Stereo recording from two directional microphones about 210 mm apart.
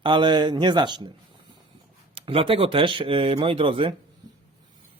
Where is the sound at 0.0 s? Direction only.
20° right (ahead or behind).